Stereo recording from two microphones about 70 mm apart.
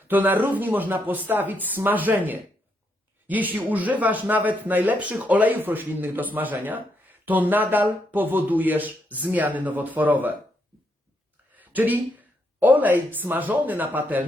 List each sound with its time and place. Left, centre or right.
0.1 s speech: right
11.5 s a sound: right
12.5 s speech: right